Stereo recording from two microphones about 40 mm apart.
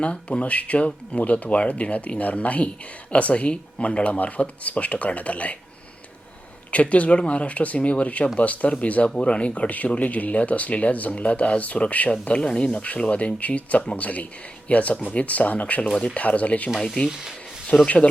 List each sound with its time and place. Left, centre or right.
0.0 s speech: left
6.7 s speech: left
16.8 s speech: centre
17.1 s speech: centre
17.8 s speech: left